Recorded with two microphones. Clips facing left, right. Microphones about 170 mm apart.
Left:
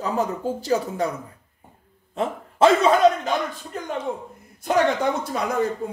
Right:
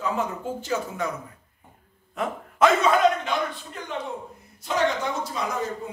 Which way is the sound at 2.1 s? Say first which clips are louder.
Left 3 dB; 30° left (ahead or behind).